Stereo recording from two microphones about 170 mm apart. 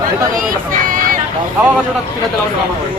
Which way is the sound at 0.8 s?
55° right (ahead or behind).